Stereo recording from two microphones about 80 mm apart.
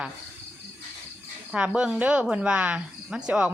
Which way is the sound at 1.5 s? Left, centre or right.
Centre.